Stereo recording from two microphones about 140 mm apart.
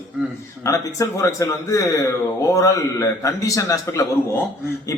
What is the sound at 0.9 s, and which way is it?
A man's voice, 20° left (ahead or behind).